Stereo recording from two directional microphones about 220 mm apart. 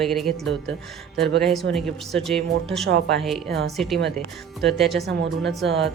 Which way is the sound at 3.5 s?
50° right (ahead or behind).